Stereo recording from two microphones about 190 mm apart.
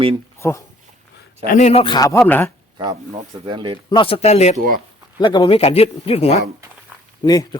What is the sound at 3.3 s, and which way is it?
Speech, 25° right (ahead or behind).